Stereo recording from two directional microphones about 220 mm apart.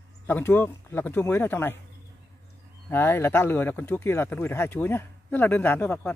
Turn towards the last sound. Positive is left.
turn(degrees=5)  # may be behind; listen again after turning